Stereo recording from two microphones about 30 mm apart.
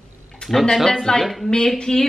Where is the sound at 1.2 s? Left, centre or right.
Centre.